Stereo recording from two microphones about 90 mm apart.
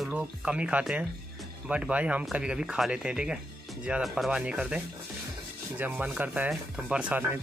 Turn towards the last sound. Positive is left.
turn(degrees=-15)  # may be behind; listen again after turning